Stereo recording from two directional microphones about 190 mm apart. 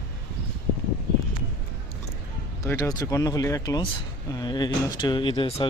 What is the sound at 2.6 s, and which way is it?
Speech, 15° left (ahead or behind).